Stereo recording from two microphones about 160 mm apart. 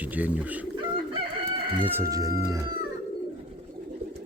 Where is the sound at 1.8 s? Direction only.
15° right (ahead or behind).